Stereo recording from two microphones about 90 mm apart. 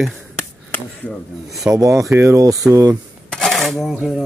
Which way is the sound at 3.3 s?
5° left (ahead or behind).